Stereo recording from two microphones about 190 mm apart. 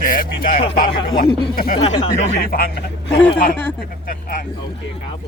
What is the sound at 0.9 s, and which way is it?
Speech, 30° left (ahead or behind).